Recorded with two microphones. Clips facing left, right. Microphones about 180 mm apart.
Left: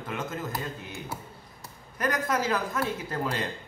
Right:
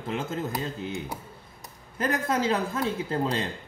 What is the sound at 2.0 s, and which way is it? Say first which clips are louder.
Speech: right 2 dB; 25° right (ahead or behind).